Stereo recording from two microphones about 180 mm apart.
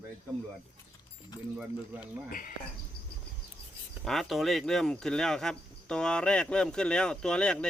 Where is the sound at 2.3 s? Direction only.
50° left (ahead or behind).